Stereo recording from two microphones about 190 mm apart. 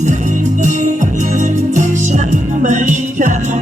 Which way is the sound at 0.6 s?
40° right (ahead or behind).